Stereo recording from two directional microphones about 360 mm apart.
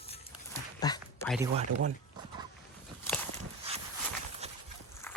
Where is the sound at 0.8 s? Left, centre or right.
Centre.